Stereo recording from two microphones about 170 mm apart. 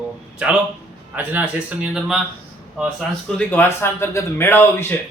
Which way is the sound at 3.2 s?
10° left (ahead or behind).